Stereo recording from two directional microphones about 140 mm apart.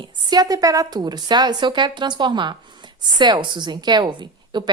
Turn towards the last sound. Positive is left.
turn(degrees=-30)  # may be behind; listen again after turning